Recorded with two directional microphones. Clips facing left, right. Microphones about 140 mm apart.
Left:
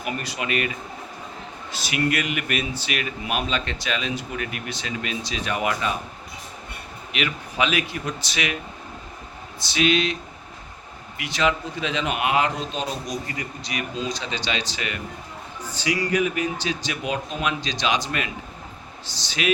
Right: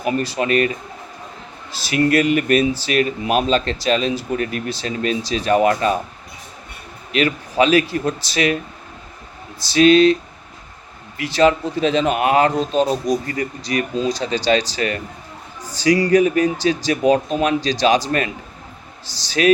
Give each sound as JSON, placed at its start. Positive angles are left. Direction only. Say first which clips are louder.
{"t": 0.0, "sound": "speech", "louder": "right 9 dB", "side_deg": -35}
{"t": 1.7, "sound": "speech", "louder": "right 8 dB", "side_deg": -35}
{"t": 7.1, "sound": "speech", "louder": "right 9 dB", "side_deg": -40}
{"t": 9.6, "sound": "speech", "louder": "right 10 dB", "side_deg": -35}
{"t": 11.2, "sound": "speech", "louder": "right 8 dB", "side_deg": -35}